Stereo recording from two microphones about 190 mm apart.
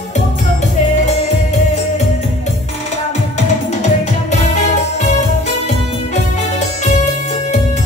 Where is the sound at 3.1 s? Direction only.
40° left (ahead or behind).